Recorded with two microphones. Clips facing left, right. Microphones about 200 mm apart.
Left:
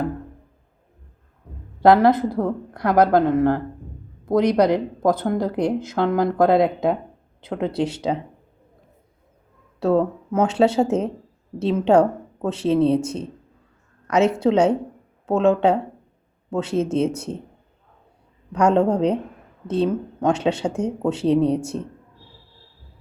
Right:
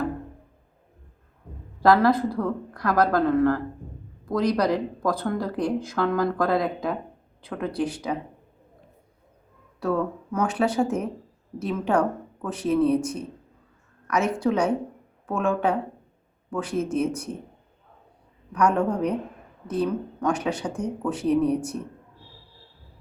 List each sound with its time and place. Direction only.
1.8 s speech: 25° left (ahead or behind)
9.8 s speech: 25° left (ahead or behind)
18.5 s speech: 25° left (ahead or behind)